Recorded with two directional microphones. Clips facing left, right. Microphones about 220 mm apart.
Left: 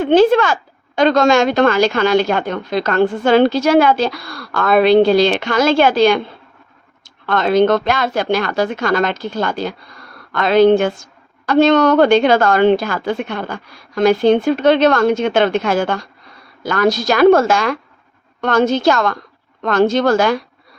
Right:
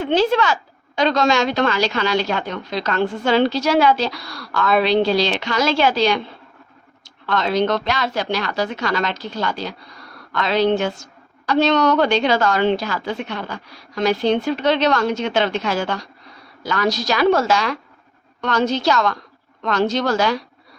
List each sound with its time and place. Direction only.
0.0 s speech: 50° left (ahead or behind)
7.3 s speech: 50° left (ahead or behind)